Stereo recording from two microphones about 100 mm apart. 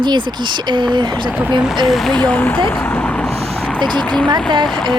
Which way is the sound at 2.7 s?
15° left (ahead or behind).